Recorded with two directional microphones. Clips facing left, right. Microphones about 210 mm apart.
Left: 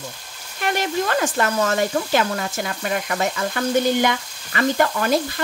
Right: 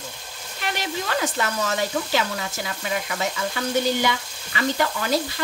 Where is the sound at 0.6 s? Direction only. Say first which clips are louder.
Left 6 dB; 50° left (ahead or behind).